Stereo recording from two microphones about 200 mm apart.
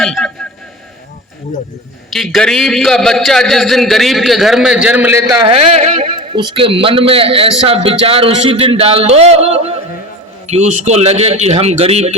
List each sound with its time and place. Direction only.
0.0 s a man's voice: centre (ahead or behind)
2.1 s a man's voice: centre (ahead or behind)
5.4 s a man's voice: 25° right (ahead or behind)